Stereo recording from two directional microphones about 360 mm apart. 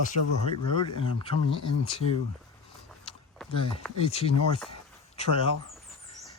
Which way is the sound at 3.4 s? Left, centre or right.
Centre.